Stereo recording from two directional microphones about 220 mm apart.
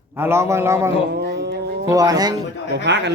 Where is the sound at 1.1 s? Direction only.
50° right (ahead or behind).